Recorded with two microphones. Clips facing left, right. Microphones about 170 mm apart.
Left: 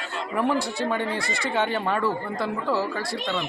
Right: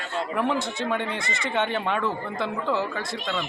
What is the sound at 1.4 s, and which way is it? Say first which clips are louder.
Speech: left 1 dB; 5° left (ahead or behind).